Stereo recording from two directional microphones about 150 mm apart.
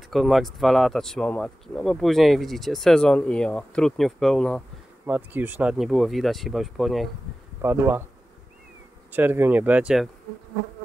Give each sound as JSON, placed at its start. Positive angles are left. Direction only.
{"t": 0.1, "sound": "speech", "side_deg": 0}
{"t": 5.0, "sound": "speech", "side_deg": -10}
{"t": 7.6, "sound": "speech", "side_deg": -15}
{"t": 9.1, "sound": "speech", "side_deg": -15}